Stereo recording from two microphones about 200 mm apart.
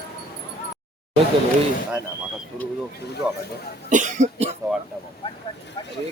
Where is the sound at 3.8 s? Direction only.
40° right (ahead or behind).